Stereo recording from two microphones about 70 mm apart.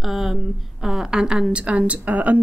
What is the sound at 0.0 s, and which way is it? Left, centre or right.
A woman's voice, centre.